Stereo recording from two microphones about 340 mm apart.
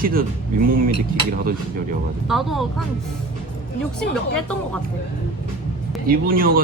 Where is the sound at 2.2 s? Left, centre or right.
Centre.